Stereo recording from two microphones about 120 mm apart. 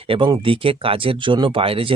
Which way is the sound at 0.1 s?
50° right (ahead or behind).